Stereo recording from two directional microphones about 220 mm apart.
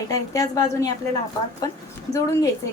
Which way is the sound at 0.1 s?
15° left (ahead or behind).